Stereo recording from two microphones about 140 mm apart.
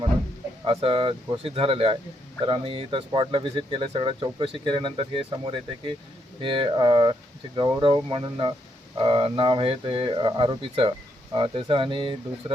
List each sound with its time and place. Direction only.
0.6 s speech: 40° right (ahead or behind)